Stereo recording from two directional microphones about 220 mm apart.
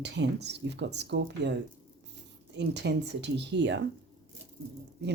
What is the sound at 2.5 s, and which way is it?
Speech, 50° right (ahead or behind).